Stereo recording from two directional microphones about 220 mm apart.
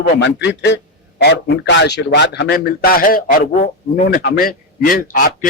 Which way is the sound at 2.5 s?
40° left (ahead or behind).